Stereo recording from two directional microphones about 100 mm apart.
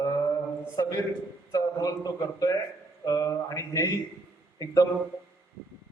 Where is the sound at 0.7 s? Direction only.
35° left (ahead or behind).